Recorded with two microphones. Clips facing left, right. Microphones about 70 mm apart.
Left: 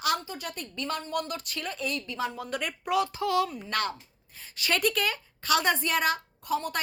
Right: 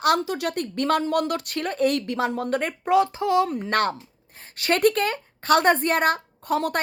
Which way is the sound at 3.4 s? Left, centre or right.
Right.